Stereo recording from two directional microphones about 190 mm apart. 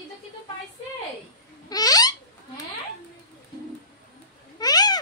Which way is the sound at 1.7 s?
20° left (ahead or behind).